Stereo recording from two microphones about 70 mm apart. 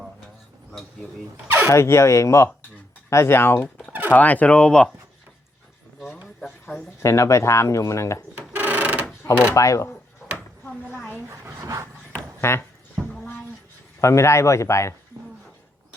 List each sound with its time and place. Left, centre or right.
1.7 s speech: left
4.1 s speech: left
6.4 s a sound: centre
7.0 s speech: left
8.4 s mechanisms: right
9.2 s speech: left
9.6 s speech: left
11.3 s dog: right
12.4 s speech: left
14.0 s speech: left
15.1 s a sound: right